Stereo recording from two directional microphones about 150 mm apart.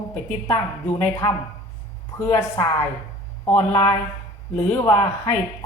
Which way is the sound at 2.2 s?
20° left (ahead or behind).